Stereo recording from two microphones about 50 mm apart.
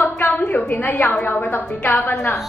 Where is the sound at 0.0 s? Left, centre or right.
Left.